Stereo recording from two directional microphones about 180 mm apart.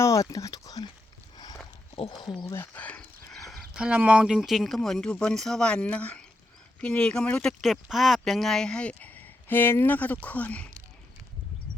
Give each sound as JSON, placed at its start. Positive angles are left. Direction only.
{"t": 0.0, "sound": "speech", "side_deg": 20}
{"t": 2.2, "sound": "speech", "side_deg": 20}